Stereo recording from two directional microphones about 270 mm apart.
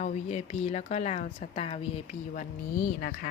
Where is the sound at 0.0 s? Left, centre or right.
Left.